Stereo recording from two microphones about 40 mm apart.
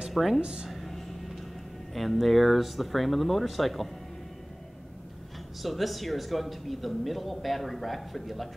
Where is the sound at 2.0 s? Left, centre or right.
Centre.